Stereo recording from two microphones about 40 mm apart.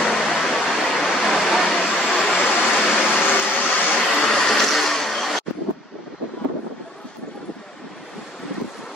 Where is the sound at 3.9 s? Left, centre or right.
Centre.